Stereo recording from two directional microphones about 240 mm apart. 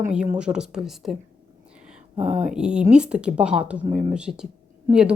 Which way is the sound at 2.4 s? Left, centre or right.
Centre.